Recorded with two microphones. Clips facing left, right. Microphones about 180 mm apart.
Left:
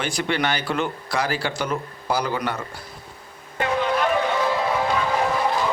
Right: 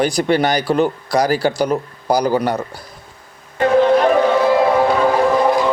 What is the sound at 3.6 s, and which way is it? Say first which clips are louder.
Music: right 10 dB; 40° right (ahead or behind).